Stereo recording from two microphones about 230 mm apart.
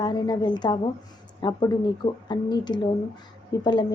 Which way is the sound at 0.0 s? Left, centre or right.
Centre.